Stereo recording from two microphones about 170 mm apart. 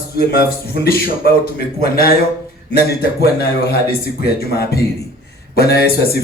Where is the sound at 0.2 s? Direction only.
65° left (ahead or behind).